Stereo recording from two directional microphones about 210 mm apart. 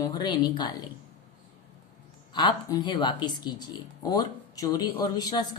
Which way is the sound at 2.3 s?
20° left (ahead or behind).